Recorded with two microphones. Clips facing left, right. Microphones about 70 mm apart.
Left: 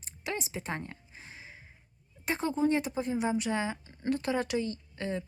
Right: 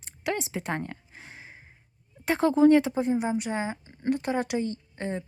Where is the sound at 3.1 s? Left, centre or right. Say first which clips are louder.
Right 2 dB; centre.